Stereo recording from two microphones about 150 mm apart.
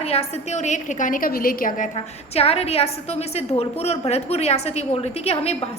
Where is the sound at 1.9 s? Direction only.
40° left (ahead or behind).